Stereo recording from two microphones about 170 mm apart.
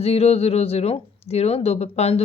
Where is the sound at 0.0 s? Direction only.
35° left (ahead or behind).